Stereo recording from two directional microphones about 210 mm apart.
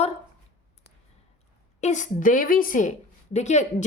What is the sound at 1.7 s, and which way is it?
A woman's voice, 35° left (ahead or behind).